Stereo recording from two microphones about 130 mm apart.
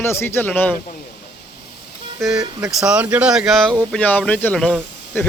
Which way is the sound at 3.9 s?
10° left (ahead or behind).